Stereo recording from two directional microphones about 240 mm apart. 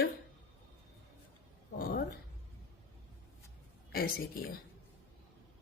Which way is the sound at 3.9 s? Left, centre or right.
Left.